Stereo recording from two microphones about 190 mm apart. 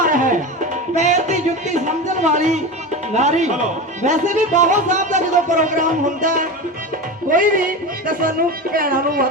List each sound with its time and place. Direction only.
0.0 s music: 45° right (ahead or behind)
0.9 s speech: 40° right (ahead or behind)